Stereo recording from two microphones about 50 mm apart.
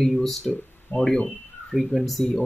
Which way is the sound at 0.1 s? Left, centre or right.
Centre.